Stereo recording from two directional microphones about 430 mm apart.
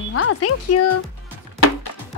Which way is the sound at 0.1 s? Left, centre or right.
Left.